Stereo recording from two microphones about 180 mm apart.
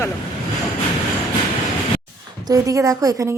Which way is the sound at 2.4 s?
20° right (ahead or behind).